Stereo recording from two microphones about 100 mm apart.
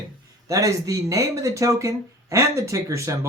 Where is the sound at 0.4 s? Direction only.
35° right (ahead or behind).